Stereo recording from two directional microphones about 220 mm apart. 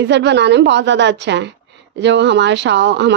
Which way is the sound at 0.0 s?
55° right (ahead or behind).